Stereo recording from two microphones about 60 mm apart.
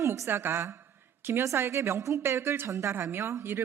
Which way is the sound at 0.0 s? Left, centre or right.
Right.